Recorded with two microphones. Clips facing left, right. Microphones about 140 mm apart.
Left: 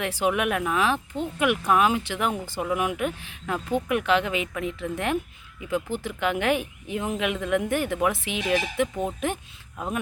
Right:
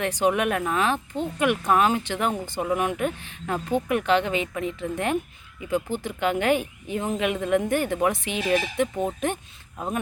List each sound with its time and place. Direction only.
0.0 s speech: 5° left (ahead or behind)